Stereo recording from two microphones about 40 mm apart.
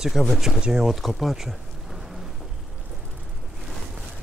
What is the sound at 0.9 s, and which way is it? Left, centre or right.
Bee, centre.